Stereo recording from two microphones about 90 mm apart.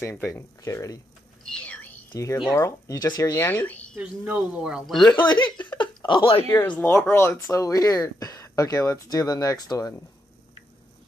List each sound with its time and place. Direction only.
0.0 s speech: 25° left (ahead or behind)
1.4 s a sound: 10° left (ahead or behind)
2.5 s speech: 35° left (ahead or behind); by 4.0 s 15° left (ahead or behind)
4.0 s speech: 15° right (ahead or behind)
4.8 s speech: centre (ahead or behind)
5.2 s speech: 55° left (ahead or behind)
5.8 s a sound: 65° left (ahead or behind)
6.8 s speech: 25° left (ahead or behind); by 9.9 s 45° left (ahead or behind)